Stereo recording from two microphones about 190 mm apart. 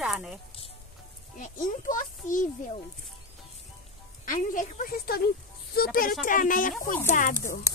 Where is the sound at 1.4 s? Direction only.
45° left (ahead or behind).